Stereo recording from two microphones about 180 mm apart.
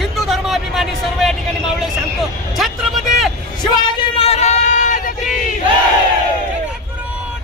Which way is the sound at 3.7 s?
25° left (ahead or behind).